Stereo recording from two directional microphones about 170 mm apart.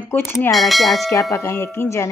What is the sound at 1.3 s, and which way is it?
Speech, 15° left (ahead or behind).